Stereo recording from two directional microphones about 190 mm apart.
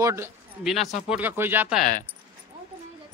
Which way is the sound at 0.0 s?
15° right (ahead or behind).